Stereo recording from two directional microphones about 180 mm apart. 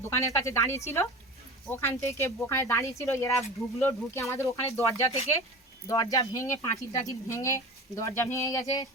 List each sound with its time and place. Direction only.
0.0 s speech: 15° left (ahead or behind)